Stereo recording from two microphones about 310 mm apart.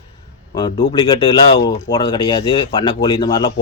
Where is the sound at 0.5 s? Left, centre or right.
Centre.